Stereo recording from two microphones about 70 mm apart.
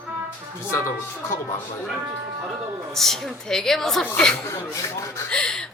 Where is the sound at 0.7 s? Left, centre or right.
Left.